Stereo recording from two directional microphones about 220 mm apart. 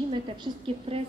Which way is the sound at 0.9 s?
25° right (ahead or behind).